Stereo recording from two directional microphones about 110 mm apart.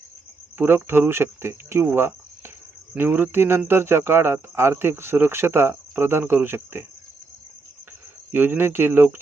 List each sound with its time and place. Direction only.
0.6 s speech: 20° right (ahead or behind)
8.3 s speech: 20° right (ahead or behind)